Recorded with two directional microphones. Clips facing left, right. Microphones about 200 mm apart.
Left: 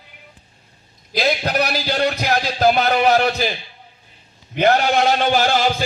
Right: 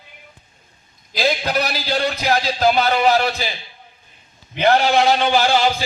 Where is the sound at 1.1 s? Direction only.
50° left (ahead or behind).